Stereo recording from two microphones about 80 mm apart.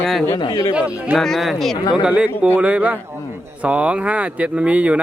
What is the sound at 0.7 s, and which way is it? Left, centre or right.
Speech, centre.